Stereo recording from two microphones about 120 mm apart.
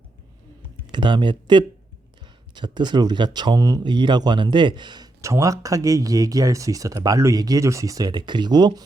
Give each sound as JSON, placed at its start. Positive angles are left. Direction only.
{"t": 0.9, "sound": "speech", "side_deg": -40}
{"t": 3.8, "sound": "speech", "side_deg": -40}
{"t": 5.2, "sound": "speech", "side_deg": -25}